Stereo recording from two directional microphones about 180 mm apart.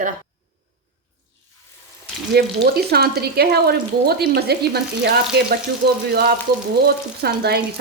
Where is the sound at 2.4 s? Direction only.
60° right (ahead or behind).